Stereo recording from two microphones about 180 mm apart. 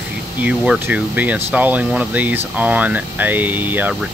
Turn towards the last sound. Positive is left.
turn(degrees=-10)  # may be behind; listen again after turning